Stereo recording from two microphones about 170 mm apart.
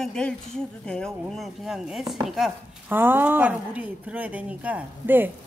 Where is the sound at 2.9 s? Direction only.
10° right (ahead or behind).